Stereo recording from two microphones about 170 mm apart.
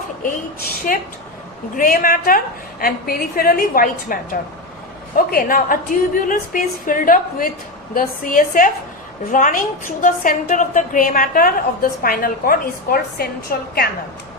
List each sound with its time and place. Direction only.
0.3 s a woman's voice: 55° left (ahead or behind)